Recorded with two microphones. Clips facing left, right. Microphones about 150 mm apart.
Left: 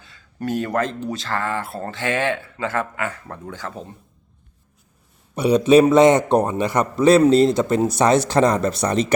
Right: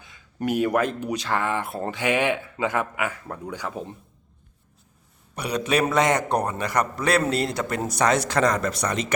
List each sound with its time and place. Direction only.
0.0 s speech: 15° right (ahead or behind)
5.3 s a man's voice: 25° left (ahead or behind)